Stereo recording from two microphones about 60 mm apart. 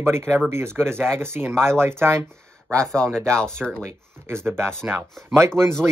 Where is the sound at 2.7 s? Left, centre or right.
Centre.